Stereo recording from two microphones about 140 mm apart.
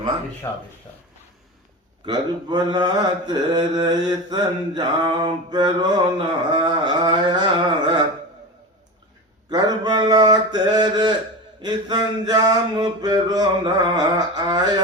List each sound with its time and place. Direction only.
2.0 s mantra: 30° right (ahead or behind)
9.5 s mantra: 30° right (ahead or behind)
11.6 s a sound: 30° right (ahead or behind)